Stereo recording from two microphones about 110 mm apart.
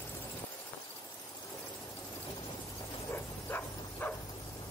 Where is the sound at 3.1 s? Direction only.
20° left (ahead or behind).